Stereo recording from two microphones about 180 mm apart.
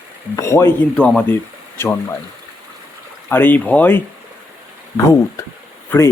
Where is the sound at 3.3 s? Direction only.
10° left (ahead or behind).